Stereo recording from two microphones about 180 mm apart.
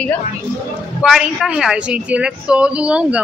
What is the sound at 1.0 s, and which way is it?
Speech, centre (ahead or behind).